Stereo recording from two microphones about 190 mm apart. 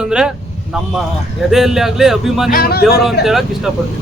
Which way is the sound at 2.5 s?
50° left (ahead or behind).